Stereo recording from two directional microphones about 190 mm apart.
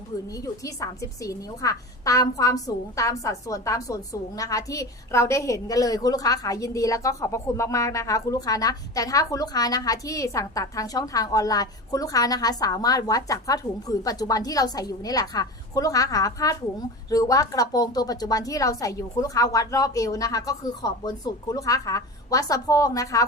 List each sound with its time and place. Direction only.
0.3 s a woman's voice: 15° left (ahead or behind)